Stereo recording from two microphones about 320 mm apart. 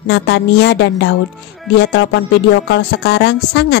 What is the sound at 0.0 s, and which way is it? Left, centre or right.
Speech, left.